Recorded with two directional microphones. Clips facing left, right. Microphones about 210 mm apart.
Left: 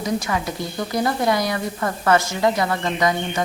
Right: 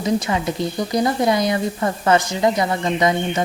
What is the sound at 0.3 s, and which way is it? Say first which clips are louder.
A woman's voice: right 4 dB; 20° right (ahead or behind).